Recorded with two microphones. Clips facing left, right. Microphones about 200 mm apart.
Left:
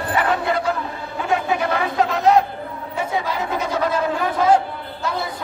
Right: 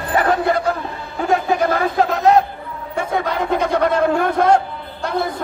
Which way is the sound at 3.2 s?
55° right (ahead or behind).